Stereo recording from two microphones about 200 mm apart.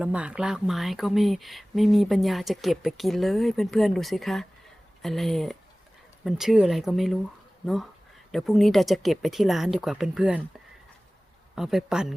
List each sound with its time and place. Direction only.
0.0 s speech: 5° right (ahead or behind)
8.3 s speech: centre (ahead or behind)
11.5 s speech: centre (ahead or behind)